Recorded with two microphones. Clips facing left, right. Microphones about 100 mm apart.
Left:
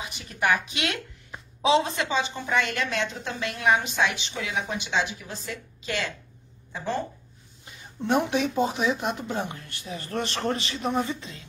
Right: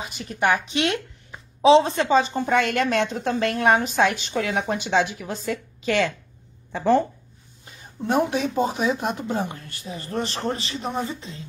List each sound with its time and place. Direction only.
0.0 s a woman's voice: 35° right (ahead or behind); by 7.0 s 60° right (ahead or behind)
8.1 s speech: 40° right (ahead or behind)